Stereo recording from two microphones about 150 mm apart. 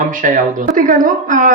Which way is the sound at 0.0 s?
60° right (ahead or behind).